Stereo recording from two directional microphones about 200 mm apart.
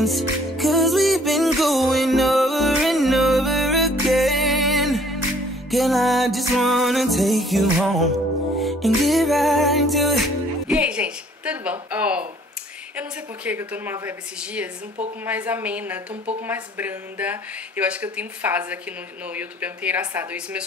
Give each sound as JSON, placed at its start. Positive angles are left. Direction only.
{"t": 0.0, "sound": "music", "side_deg": 0}
{"t": 10.7, "sound": "a sound", "side_deg": -5}
{"t": 12.9, "sound": "a woman's voice", "side_deg": -10}